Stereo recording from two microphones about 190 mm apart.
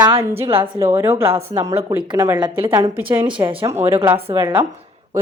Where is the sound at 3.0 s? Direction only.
10° right (ahead or behind).